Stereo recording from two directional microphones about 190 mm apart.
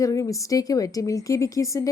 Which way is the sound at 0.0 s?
15° left (ahead or behind).